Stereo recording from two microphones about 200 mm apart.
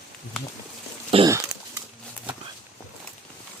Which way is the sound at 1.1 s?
30° right (ahead or behind).